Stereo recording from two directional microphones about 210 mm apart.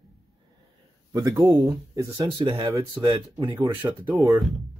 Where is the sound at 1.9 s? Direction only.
20° right (ahead or behind).